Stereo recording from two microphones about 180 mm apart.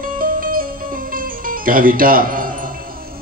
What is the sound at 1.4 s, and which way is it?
Speech, 50° right (ahead or behind).